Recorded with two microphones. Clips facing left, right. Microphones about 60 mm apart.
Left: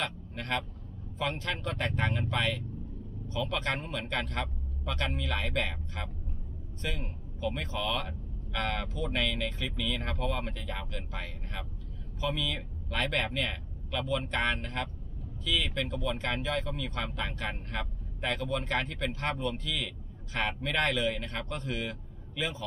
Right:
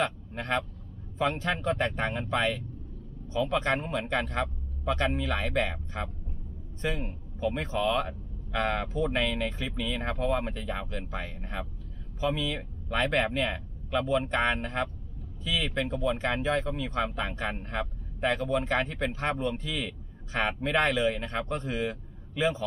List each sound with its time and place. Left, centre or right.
0.0 s speech: right